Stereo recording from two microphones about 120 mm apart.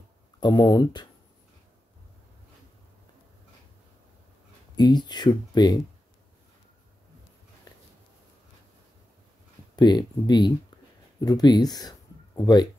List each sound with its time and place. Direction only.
0.4 s speech: 35° left (ahead or behind)
4.7 s speech: 35° left (ahead or behind)
7.7 s a sound: 35° left (ahead or behind)
9.8 s speech: 35° left (ahead or behind)